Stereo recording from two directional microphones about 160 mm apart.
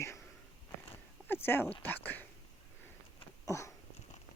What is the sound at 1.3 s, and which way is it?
Speech, 15° left (ahead or behind).